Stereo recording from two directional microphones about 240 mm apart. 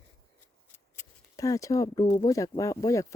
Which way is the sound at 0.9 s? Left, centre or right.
Centre.